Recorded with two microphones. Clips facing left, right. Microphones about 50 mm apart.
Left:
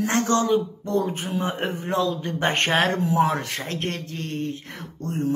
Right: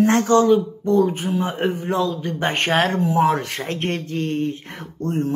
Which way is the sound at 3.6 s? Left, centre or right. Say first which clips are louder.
Right 4 dB; right.